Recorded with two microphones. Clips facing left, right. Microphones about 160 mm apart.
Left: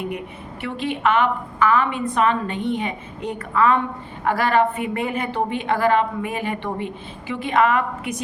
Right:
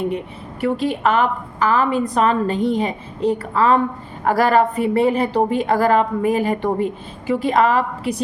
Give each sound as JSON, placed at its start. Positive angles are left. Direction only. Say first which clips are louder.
{"t": 0.6, "sound": "a woman's voice", "louder": "right 4 dB", "side_deg": -40}